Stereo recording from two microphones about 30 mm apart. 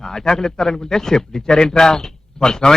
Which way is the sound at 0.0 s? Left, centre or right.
Centre.